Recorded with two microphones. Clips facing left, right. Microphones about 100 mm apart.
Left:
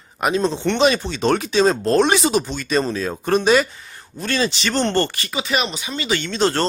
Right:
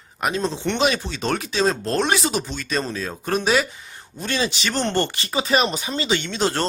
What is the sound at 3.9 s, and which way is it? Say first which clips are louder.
Speech: left 3 dB; 15° right (ahead or behind).